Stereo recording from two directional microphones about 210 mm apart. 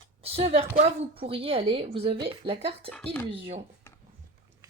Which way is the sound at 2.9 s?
5° left (ahead or behind).